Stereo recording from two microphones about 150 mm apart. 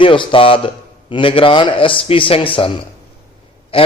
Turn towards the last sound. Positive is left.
turn(degrees=40)  # may be behind; listen again after turning